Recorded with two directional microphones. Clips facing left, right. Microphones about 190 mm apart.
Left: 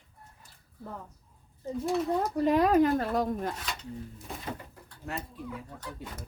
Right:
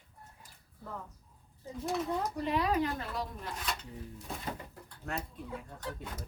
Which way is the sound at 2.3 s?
45° left (ahead or behind).